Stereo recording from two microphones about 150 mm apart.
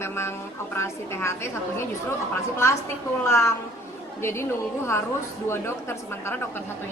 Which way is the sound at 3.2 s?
20° left (ahead or behind).